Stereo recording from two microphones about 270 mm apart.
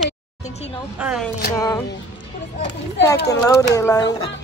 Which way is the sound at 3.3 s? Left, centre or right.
Centre.